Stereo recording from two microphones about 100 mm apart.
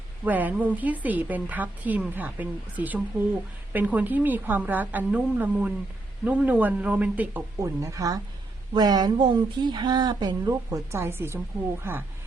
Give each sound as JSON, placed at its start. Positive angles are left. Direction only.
{"t": 0.3, "sound": "a woman's voice", "side_deg": -15}
{"t": 7.6, "sound": "speech", "side_deg": -30}
{"t": 10.5, "sound": "a woman's voice", "side_deg": -25}